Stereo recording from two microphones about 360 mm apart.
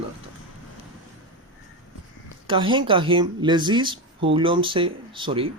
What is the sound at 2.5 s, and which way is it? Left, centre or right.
Speech, centre.